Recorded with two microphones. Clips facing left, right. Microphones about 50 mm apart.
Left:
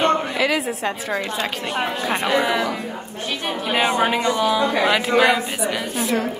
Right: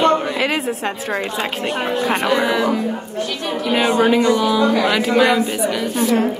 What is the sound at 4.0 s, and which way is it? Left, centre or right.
Speech, centre.